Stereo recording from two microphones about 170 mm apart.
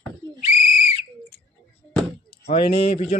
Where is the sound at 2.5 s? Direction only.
35° left (ahead or behind).